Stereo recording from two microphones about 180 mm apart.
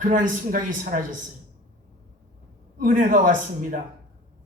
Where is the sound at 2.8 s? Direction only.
50° right (ahead or behind).